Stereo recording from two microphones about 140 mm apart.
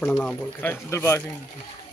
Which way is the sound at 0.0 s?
10° left (ahead or behind).